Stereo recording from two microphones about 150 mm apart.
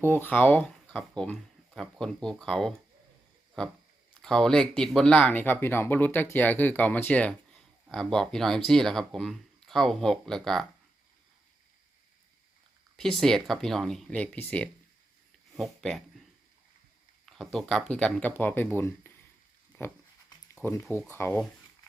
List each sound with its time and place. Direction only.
0.0 s speech: 15° left (ahead or behind)
13.0 s speech: 5° left (ahead or behind)
17.2 s speech: centre (ahead or behind); by 19.9 s 15° left (ahead or behind)
21.1 s speech: 15° left (ahead or behind)